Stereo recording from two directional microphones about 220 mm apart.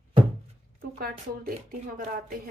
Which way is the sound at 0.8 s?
40° right (ahead or behind).